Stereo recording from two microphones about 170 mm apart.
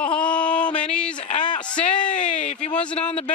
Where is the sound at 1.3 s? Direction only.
25° left (ahead or behind).